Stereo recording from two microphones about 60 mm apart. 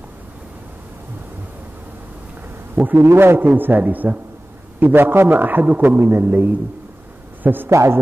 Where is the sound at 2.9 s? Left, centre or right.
Right.